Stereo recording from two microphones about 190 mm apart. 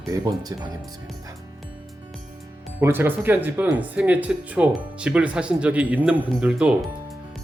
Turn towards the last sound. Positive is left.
turn(degrees=-5)  # may be behind; listen again after turning